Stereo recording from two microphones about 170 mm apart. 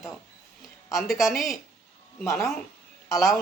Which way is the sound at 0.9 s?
Centre (ahead or behind).